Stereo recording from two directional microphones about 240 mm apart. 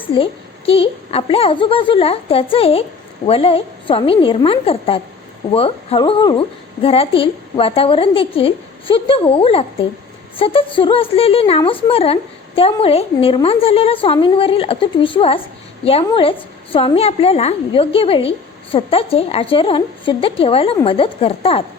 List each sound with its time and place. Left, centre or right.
0.1 s a woman's voice: left